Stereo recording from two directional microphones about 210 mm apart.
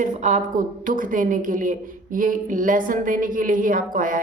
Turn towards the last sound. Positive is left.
turn(degrees=-40)  # may be behind; listen again after turning